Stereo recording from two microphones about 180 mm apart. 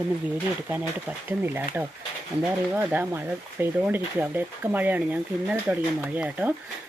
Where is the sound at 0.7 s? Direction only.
10° right (ahead or behind).